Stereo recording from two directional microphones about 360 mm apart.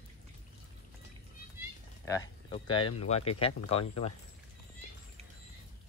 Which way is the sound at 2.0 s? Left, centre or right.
Centre.